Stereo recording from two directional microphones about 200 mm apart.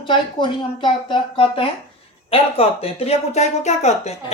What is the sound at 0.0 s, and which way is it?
Speech, 25° left (ahead or behind).